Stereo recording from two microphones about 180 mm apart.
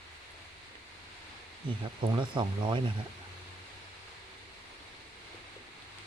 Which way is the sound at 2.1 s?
25° right (ahead or behind).